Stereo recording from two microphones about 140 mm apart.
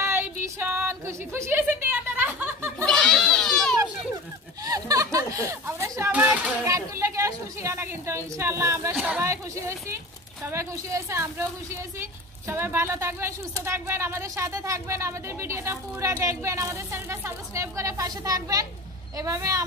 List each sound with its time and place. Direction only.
0.0 s a sound: 15° right (ahead or behind)
2.8 s goat: 5° left (ahead or behind)
4.6 s a sound: 25° right (ahead or behind)
6.7 s a woman's voice: 20° right (ahead or behind)
8.9 s speech: 5° right (ahead or behind)
9.2 s a woman's voice: 20° right (ahead or behind)